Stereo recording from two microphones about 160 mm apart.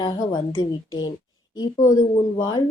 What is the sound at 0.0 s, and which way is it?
A woman's voice, 25° left (ahead or behind).